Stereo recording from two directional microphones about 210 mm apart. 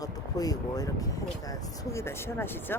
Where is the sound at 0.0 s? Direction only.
15° left (ahead or behind).